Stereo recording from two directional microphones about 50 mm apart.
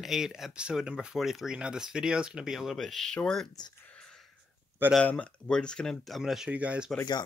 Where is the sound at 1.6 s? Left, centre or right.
Centre.